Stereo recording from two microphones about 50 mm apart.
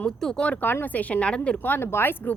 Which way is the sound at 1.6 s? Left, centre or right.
Left.